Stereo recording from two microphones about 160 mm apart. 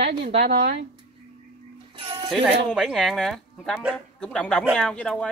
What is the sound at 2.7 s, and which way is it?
Speech, 5° left (ahead or behind).